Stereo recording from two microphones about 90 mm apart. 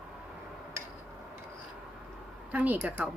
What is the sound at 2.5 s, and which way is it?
Speech, 20° right (ahead or behind).